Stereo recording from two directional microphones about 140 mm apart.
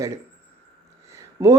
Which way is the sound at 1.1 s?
20° right (ahead or behind).